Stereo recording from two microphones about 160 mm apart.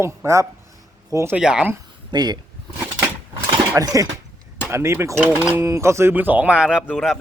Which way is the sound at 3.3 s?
20° right (ahead or behind).